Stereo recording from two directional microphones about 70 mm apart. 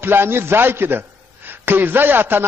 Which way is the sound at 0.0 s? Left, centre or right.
Right.